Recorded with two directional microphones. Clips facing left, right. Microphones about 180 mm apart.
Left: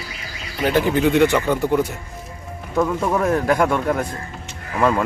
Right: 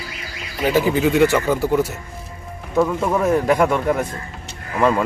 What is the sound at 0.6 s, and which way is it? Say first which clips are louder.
Speech: even; 5° right (ahead or behind).